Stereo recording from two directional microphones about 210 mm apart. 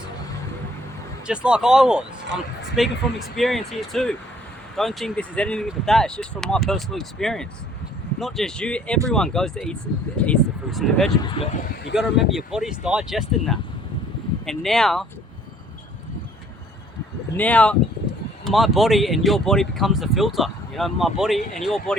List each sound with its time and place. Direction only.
1.3 s speech: 5° right (ahead or behind)
11.2 s speech: 25° left (ahead or behind)
12.3 s speech: centre (ahead or behind)
17.3 s speech: 5° left (ahead or behind)